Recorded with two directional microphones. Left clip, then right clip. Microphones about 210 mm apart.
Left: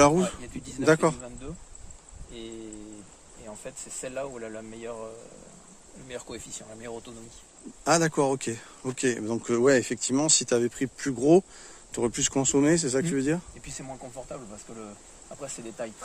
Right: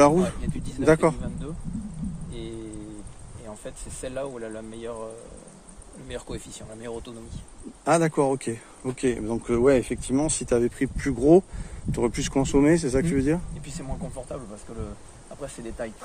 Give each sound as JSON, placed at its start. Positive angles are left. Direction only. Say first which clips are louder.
{"t": 0.0, "sound": "speech", "louder": "right 2 dB", "side_deg": 15}
{"t": 3.4, "sound": "speech", "louder": "right 1 dB", "side_deg": -5}
{"t": 7.8, "sound": "speech", "louder": "right 2 dB", "side_deg": 15}
{"t": 13.7, "sound": "speech", "louder": "right 2 dB", "side_deg": -10}